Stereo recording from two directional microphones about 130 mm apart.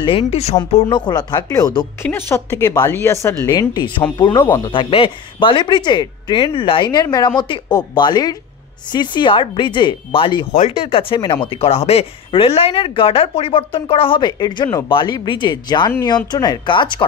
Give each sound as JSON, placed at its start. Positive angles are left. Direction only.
{"t": 0.0, "sound": "speech", "side_deg": 40}
{"t": 2.0, "sound": "speech", "side_deg": 20}
{"t": 3.4, "sound": "speech", "side_deg": 30}
{"t": 10.5, "sound": "speech", "side_deg": 70}
{"t": 10.8, "sound": "speech", "side_deg": 45}